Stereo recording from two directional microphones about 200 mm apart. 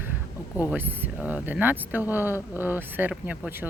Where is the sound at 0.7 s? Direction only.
10° right (ahead or behind).